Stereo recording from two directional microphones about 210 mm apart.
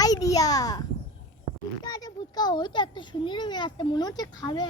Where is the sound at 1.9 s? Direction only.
20° left (ahead or behind).